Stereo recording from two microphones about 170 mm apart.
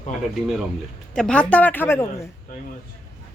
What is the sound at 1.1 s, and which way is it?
Speech, 5° left (ahead or behind).